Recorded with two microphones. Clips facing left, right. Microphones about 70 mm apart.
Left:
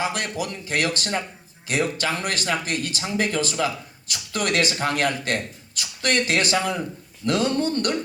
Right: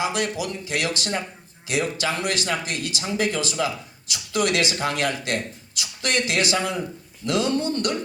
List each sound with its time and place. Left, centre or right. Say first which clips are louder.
0.0 s speech: right 1 dB; left